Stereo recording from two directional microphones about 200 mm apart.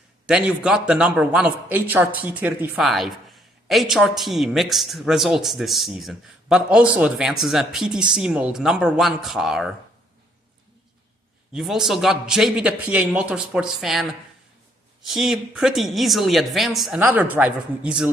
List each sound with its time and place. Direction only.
0.3 s a man's voice: 5° right (ahead or behind)
11.5 s a man's voice: centre (ahead or behind)